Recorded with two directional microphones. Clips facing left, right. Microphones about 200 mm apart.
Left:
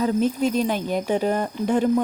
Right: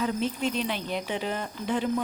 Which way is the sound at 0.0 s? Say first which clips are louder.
Left 7 dB; 45° left (ahead or behind).